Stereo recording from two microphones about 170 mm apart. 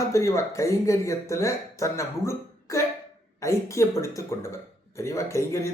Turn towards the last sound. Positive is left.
turn(degrees=15)  # may be behind; listen again after turning